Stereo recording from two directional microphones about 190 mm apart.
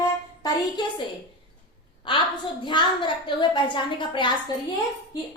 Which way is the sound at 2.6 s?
25° left (ahead or behind).